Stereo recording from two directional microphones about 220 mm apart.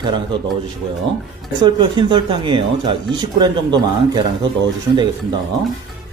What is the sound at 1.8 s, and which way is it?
Speech, 20° right (ahead or behind).